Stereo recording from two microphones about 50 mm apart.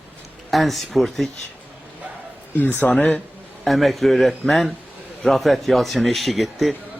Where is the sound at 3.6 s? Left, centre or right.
Centre.